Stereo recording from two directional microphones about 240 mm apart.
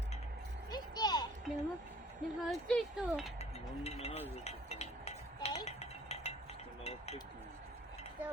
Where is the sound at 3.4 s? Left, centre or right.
Left.